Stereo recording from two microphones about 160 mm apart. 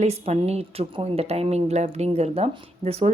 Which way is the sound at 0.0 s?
40° right (ahead or behind).